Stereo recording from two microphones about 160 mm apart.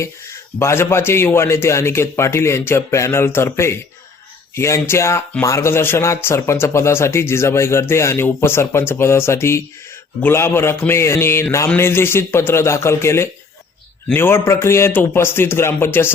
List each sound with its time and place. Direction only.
0.6 s speech: 15° left (ahead or behind)